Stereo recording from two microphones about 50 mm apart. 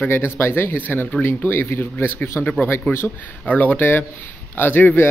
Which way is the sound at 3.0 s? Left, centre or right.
Left.